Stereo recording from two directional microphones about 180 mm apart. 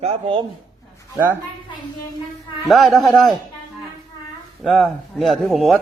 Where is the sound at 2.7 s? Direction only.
Centre (ahead or behind).